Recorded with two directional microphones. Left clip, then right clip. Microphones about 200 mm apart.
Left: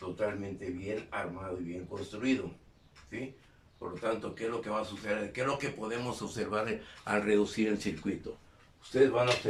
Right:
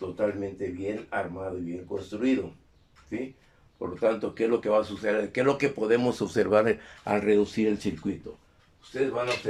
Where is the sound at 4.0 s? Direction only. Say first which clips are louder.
Right 9 dB; 45° right (ahead or behind); by 8.1 s 25° right (ahead or behind).